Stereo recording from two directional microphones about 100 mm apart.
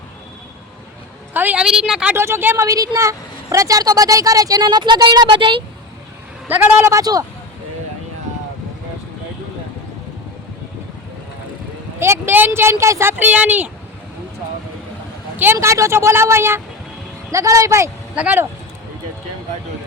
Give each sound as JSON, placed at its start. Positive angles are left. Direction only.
{"t": 1.3, "sound": "a sound", "side_deg": -20}
{"t": 1.6, "sound": "speech", "side_deg": -5}
{"t": 2.1, "sound": "a woman's voice", "side_deg": -25}
{"t": 6.5, "sound": "a woman's voice", "side_deg": -20}
{"t": 11.9, "sound": "speech", "side_deg": -25}
{"t": 15.5, "sound": "a woman's voice", "side_deg": -30}
{"t": 18.1, "sound": "speech", "side_deg": -10}